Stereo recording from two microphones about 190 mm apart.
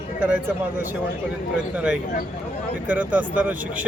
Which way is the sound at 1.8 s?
5° right (ahead or behind).